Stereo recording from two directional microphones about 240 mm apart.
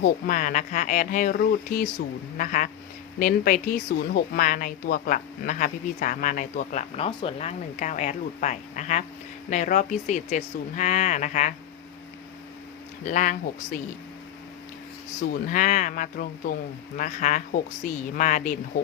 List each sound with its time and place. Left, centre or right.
0.0 s speech: left
13.1 s speech: left
15.3 s speech: left